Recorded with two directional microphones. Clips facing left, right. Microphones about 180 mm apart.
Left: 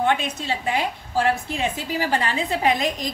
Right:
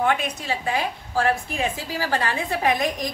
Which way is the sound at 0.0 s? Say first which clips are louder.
Left 1 dB; 25° left (ahead or behind).